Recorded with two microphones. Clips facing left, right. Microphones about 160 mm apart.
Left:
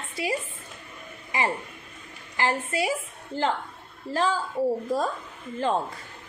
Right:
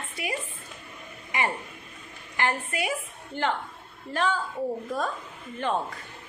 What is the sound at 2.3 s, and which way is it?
A woman's voice, 30° left (ahead or behind).